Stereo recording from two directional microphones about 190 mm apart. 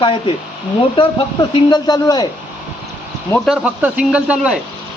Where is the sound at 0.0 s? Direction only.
25° left (ahead or behind).